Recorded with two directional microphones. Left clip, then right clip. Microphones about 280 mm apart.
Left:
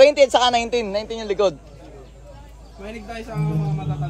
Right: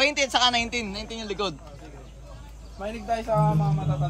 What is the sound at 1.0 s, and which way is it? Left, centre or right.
Speech, centre.